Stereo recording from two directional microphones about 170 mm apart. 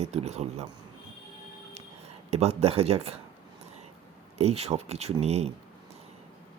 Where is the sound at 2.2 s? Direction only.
40° right (ahead or behind).